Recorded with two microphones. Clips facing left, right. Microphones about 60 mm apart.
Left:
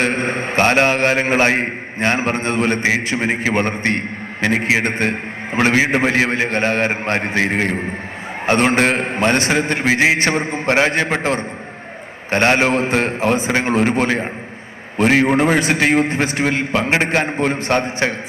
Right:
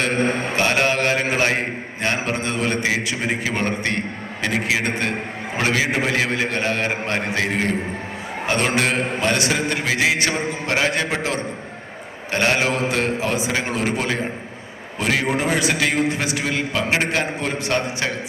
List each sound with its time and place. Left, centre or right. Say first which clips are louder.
0.0 s a man's voice: left 1 dB; left